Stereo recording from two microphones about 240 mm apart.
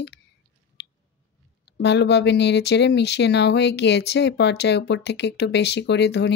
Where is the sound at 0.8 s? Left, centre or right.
Left.